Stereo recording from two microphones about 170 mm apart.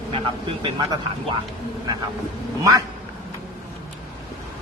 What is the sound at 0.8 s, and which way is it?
Speech, 25° right (ahead or behind).